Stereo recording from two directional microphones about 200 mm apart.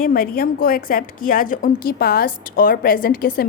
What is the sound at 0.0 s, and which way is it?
A woman's voice, 45° left (ahead or behind).